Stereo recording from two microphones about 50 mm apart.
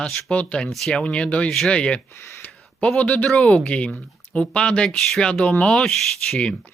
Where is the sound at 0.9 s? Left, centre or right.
Left.